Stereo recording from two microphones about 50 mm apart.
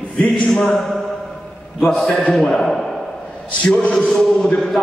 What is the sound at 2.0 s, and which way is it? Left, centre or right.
Speech, centre.